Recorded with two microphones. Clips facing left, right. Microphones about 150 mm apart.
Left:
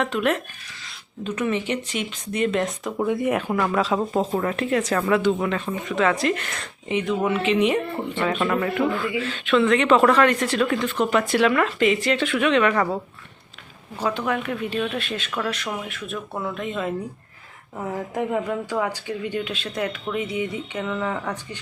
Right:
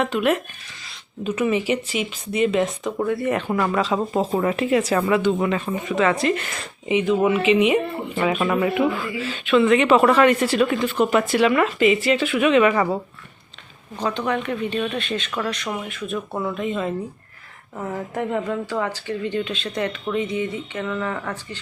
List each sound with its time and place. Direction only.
0.0 s speech: 5° right (ahead or behind)
3.1 s speech: 15° left (ahead or behind)
3.5 s speech: centre (ahead or behind)
13.9 s speech: 5° left (ahead or behind)